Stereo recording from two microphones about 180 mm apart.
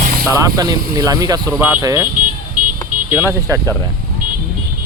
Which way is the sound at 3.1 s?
15° right (ahead or behind).